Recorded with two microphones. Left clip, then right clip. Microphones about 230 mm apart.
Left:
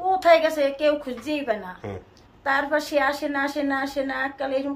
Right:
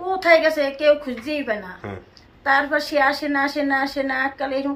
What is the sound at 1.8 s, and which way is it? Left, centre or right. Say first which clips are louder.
Speech: right 1 dB; centre.